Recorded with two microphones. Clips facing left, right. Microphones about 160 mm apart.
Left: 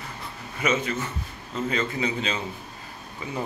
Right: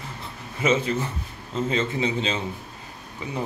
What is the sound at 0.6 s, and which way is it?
A man's voice, 30° right (ahead or behind).